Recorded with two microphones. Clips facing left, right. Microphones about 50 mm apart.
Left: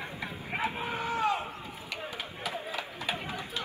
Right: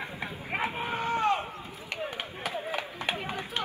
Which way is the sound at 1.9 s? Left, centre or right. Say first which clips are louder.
Right 4 dB; right.